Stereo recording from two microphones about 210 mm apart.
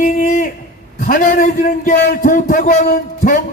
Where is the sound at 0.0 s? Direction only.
35° left (ahead or behind).